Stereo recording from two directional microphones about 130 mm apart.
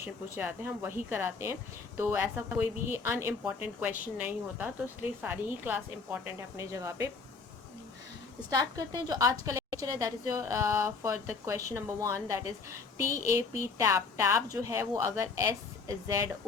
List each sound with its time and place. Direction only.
0.0 s a woman's voice: 15° right (ahead or behind)
8.4 s a woman's voice: 30° right (ahead or behind)